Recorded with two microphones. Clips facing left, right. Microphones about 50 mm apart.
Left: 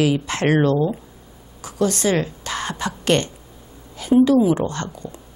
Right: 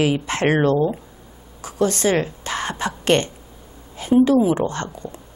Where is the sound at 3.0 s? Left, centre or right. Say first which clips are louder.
Right 1 dB; right.